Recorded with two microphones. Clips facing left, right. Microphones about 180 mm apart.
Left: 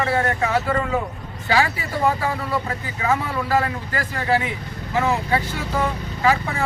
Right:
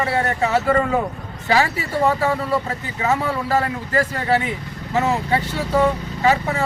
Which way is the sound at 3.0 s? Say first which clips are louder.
Right 2 dB; 25° right (ahead or behind).